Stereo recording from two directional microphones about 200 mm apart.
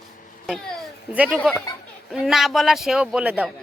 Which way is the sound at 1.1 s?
5° right (ahead or behind).